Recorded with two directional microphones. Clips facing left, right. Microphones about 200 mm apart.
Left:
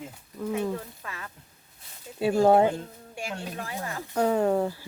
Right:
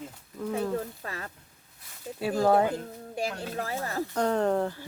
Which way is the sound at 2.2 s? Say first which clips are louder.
Left 4 dB; 25° left (ahead or behind).